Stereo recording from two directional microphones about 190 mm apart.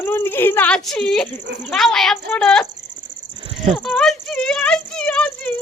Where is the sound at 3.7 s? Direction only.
Centre (ahead or behind).